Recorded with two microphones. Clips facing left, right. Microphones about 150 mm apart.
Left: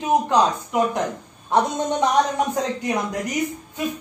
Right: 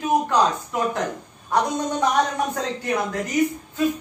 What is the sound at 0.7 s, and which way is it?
Speech, 20° left (ahead or behind).